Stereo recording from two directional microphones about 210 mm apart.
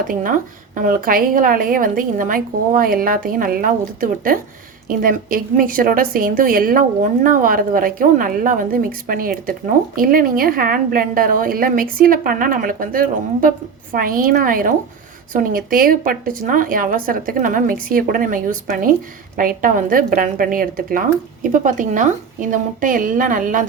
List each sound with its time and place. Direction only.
0.1 s a woman's voice: 40° right (ahead or behind)